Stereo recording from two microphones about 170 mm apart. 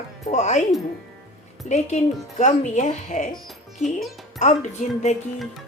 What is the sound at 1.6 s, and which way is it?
Speech, 45° left (ahead or behind).